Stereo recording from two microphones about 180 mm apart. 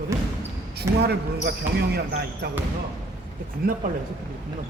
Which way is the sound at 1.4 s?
60° right (ahead or behind).